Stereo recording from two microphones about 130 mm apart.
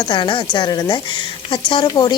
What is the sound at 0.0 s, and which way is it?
Speech, 40° left (ahead or behind).